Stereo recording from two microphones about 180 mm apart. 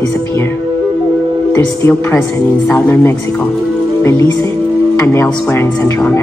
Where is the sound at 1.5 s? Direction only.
15° left (ahead or behind).